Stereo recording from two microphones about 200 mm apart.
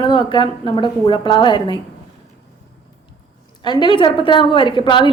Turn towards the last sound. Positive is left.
turn(degrees=25)  # may be behind; listen again after turning